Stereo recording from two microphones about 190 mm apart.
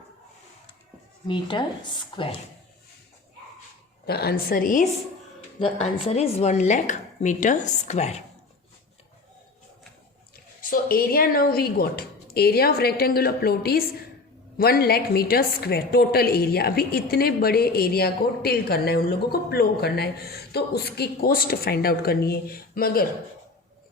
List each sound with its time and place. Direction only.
1.3 s speech: 25° left (ahead or behind)
4.0 s speech: 55° left (ahead or behind); by 4.9 s 40° left (ahead or behind)
5.5 s speech: 30° left (ahead or behind)
10.6 s a woman's voice: 50° left (ahead or behind)